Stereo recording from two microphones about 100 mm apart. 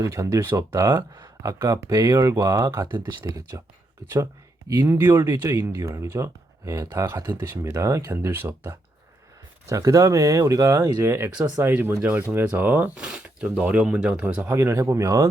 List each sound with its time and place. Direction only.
0.0 s speech: 30° right (ahead or behind)
4.8 s speech: 25° right (ahead or behind)
12.9 s speech: 5° right (ahead or behind)
14.4 s speech: 25° right (ahead or behind)